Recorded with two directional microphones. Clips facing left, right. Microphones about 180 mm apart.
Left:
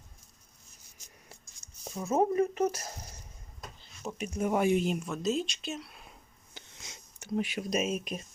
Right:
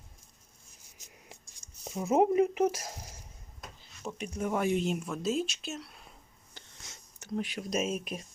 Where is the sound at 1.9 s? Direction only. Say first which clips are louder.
Right 2 dB; 15° right (ahead or behind).